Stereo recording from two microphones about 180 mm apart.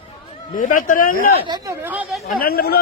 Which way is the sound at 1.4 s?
25° right (ahead or behind).